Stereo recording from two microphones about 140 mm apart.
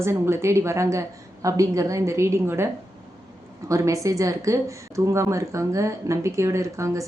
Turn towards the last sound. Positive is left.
turn(degrees=-20)  # may be behind; listen again after turning